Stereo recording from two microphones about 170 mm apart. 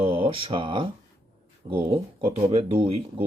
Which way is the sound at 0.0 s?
30° right (ahead or behind).